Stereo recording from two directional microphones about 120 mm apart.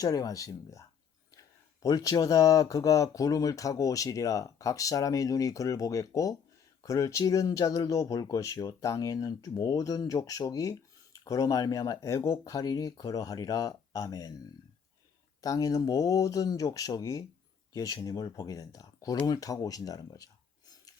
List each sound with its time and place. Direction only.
0.0 s speech: 30° left (ahead or behind)
15.4 s speech: 30° left (ahead or behind)